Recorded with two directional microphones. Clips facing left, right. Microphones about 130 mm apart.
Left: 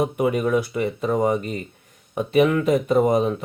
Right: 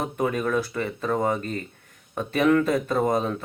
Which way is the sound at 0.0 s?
15° left (ahead or behind).